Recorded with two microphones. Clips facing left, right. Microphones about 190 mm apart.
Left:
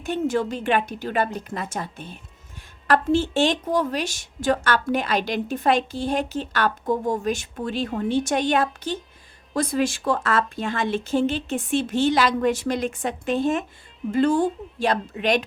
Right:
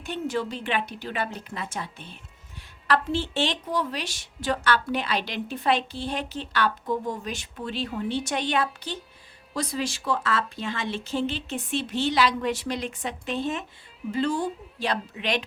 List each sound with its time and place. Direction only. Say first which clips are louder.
0.0 s a woman's voice: left 5 dB; 45° left (ahead or behind)